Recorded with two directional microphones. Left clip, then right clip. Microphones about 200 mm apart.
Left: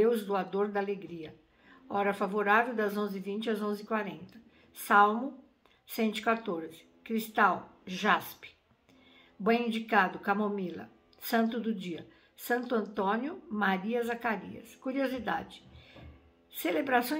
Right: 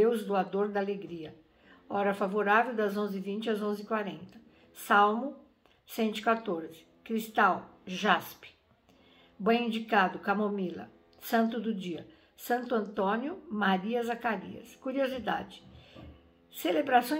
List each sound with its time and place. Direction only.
0.0 s speech: 5° left (ahead or behind)
0.8 s speech: 45° left (ahead or behind)
1.2 s speech: 10° left (ahead or behind)
9.4 s a woman's voice: 10° left (ahead or behind)
16.6 s speech: 5° left (ahead or behind)